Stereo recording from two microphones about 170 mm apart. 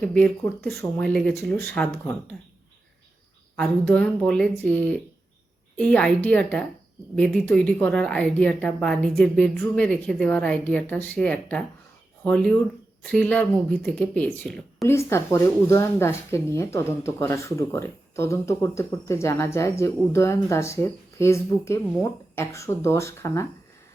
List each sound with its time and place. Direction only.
0.0 s a woman's voice: 5° left (ahead or behind)
3.8 s a woman's voice: 5° left (ahead or behind)
14.8 s speech: 15° left (ahead or behind)